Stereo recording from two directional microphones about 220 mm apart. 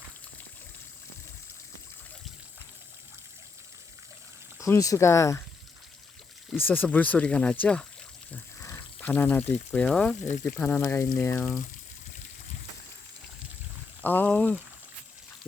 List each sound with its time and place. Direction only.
4.6 s speech: 15° left (ahead or behind)
6.5 s speech: 10° left (ahead or behind)
10.2 s speech: 35° left (ahead or behind)
10.4 s speech: 10° left (ahead or behind)
14.0 s speech: 10° left (ahead or behind)